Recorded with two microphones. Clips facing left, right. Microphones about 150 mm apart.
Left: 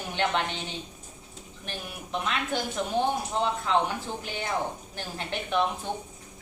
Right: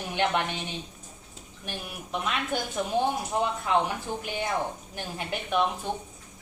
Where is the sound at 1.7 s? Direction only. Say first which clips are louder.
Right 1 dB; 5° right (ahead or behind).